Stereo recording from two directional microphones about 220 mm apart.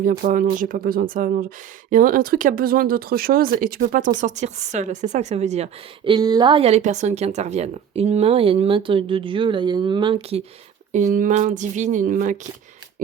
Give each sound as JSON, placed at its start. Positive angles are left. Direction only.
{"t": 0.0, "sound": "speech", "side_deg": -40}
{"t": 6.1, "sound": "speech", "side_deg": -20}